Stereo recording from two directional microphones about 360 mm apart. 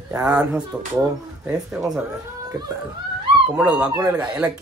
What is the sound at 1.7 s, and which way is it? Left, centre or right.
Speech, centre.